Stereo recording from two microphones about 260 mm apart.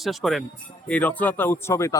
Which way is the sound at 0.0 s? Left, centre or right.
Centre.